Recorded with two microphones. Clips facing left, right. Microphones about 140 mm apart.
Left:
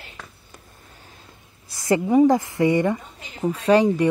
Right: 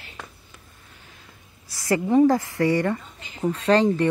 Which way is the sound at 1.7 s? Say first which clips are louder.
Left 2 dB; 20° left (ahead or behind).